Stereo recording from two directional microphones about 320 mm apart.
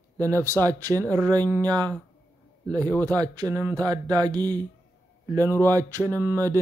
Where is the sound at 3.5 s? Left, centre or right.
Centre.